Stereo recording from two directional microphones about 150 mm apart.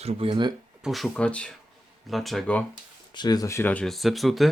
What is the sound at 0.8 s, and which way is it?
Speech, centre (ahead or behind).